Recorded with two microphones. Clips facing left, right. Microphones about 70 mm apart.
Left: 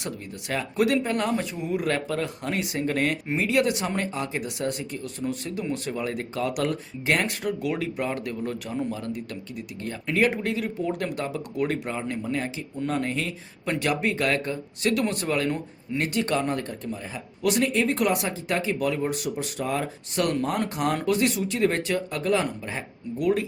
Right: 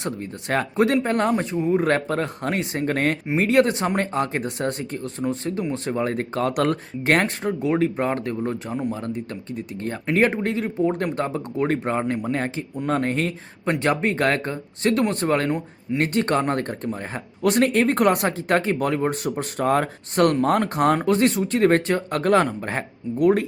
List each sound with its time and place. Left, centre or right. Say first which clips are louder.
0.0 s speech: right 5 dB; right
7.4 s speech: right 6 dB; right
15.4 s speech: right 4 dB; centre
16.0 s speech: right 4 dB; right